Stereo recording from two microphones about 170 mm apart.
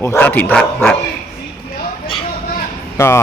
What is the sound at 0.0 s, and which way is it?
Speech, 10° left (ahead or behind).